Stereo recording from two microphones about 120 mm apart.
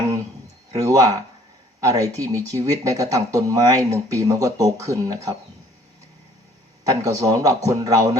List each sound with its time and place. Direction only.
0.8 s speech: 25° right (ahead or behind)
6.8 s speech: 30° right (ahead or behind)